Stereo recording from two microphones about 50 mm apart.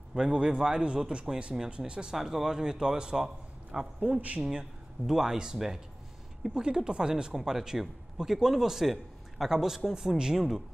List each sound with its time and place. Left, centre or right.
0.1 s speech: centre